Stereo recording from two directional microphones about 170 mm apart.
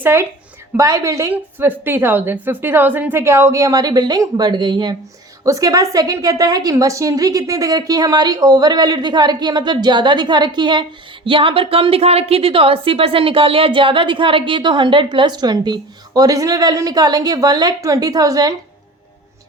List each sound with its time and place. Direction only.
0.0 s a woman's voice: 15° right (ahead or behind)